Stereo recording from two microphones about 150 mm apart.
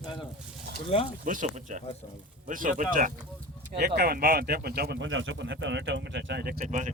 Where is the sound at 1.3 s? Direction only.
55° right (ahead or behind).